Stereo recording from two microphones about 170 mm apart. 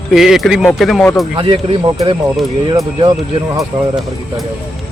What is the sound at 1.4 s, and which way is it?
Speech, 30° right (ahead or behind).